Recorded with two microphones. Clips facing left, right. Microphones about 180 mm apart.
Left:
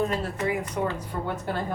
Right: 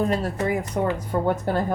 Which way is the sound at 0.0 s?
40° right (ahead or behind).